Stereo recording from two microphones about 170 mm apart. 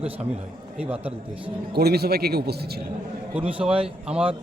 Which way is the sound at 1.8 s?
70° right (ahead or behind).